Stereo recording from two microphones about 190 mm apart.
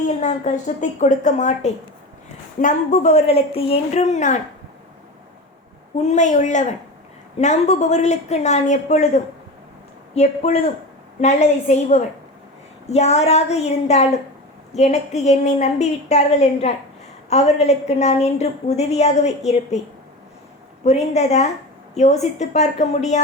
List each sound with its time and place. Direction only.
0.2 s a woman's voice: 40° left (ahead or behind)
6.0 s a woman's voice: 40° left (ahead or behind)
20.8 s a woman's voice: 35° left (ahead or behind)